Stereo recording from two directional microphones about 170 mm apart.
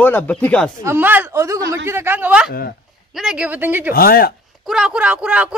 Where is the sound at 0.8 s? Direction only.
10° right (ahead or behind).